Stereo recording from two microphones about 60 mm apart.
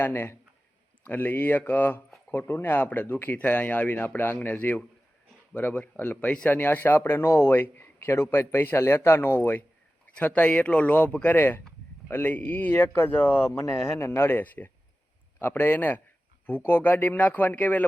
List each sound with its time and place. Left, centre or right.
0.0 s speech: left
6.1 s speech: left
6.5 s speech: left
10.2 s speech: left
11.3 s speech: left